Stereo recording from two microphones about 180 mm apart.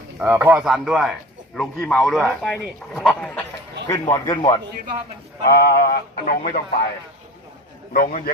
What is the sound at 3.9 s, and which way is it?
Speech, 20° left (ahead or behind).